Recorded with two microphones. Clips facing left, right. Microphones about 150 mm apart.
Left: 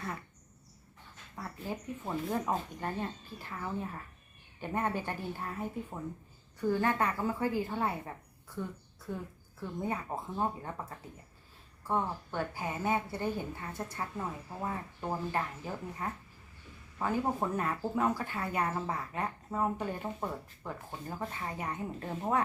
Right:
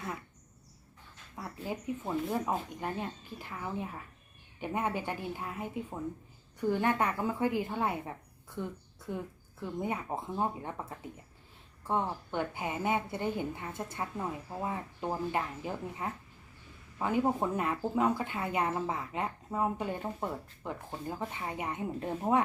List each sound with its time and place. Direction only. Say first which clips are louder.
2.0 s a woman's voice: even; 10° right (ahead or behind)
9.6 s a woman's voice: right 1 dB; 15° right (ahead or behind)